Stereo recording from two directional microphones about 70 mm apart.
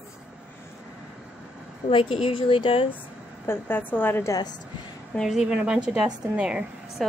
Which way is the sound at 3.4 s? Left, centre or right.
Left.